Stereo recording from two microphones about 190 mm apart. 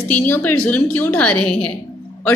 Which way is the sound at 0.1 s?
10° left (ahead or behind).